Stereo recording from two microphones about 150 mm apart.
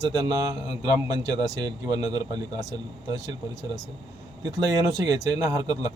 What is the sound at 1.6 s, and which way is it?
A man's voice, 25° right (ahead or behind).